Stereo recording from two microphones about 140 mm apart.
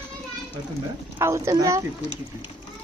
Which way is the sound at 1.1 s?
20° right (ahead or behind).